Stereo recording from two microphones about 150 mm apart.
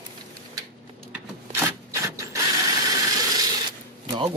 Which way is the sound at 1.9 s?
20° right (ahead or behind).